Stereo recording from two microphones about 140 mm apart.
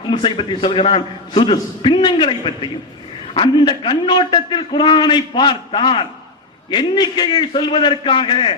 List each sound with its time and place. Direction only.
0.0 s a man's voice: 35° left (ahead or behind)